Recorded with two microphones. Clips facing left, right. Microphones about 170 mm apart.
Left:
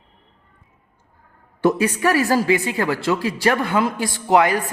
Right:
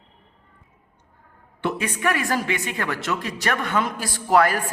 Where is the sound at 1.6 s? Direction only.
35° left (ahead or behind).